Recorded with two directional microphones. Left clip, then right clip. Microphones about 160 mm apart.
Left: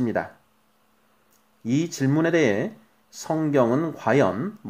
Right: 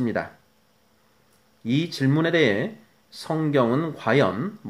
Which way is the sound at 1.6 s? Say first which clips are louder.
Even; 55° left (ahead or behind).